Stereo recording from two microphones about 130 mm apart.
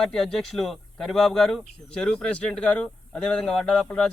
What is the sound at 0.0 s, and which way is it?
A man's voice, 5° left (ahead or behind).